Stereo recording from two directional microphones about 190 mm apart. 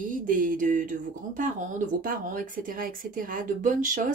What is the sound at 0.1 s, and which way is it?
Speech, 45° right (ahead or behind).